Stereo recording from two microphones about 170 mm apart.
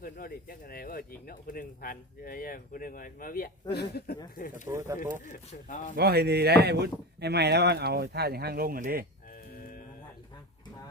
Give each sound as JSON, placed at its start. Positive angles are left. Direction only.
{"t": 0.0, "sound": "speech", "side_deg": 55}
{"t": 4.7, "sound": "speech", "side_deg": -20}
{"t": 5.3, "sound": "speech", "side_deg": 50}
{"t": 6.0, "sound": "speech", "side_deg": -70}